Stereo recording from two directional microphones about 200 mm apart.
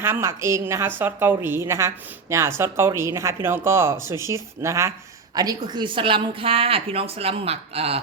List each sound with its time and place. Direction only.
0.0 s speech: 15° right (ahead or behind); by 8.0 s 30° right (ahead or behind)